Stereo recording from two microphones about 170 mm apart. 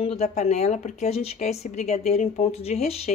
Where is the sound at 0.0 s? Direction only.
35° left (ahead or behind).